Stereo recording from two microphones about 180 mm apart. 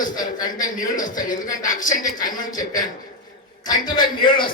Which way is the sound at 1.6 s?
45° left (ahead or behind).